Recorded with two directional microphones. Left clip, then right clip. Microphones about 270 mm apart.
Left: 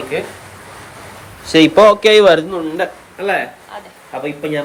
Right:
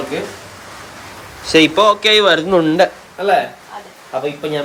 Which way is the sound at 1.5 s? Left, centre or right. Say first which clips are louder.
Left 3 dB; centre.